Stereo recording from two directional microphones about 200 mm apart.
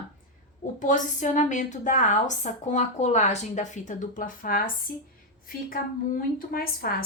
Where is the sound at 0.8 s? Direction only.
40° left (ahead or behind).